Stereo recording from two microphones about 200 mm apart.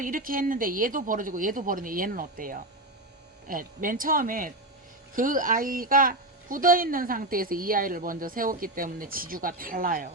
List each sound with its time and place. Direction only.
0.0 s speech: 45° right (ahead or behind)